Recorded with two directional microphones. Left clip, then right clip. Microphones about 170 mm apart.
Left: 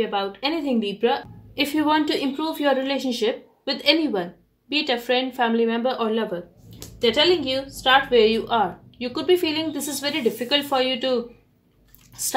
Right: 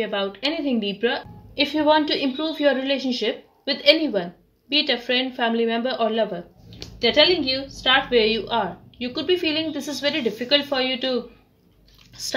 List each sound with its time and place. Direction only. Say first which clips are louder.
0.0 s a woman's voice: even; 35° left (ahead or behind)